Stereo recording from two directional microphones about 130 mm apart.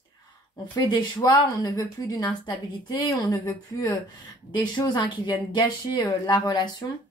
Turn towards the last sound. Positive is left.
turn(degrees=35)  # may be behind; listen again after turning